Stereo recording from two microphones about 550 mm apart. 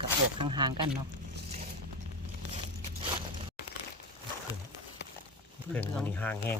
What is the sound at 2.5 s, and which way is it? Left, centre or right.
Zipper, centre.